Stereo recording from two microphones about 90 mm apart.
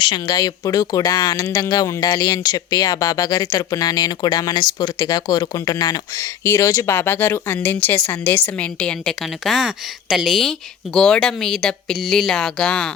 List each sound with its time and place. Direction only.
0.0 s speech: 60° left (ahead or behind)
0.3 s speech: 40° left (ahead or behind)
6.4 s speech: 30° left (ahead or behind)
8.8 s a woman's voice: 5° left (ahead or behind)
10.9 s speech: 10° left (ahead or behind)